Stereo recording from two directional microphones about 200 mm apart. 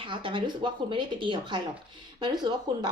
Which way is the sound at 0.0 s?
25° right (ahead or behind).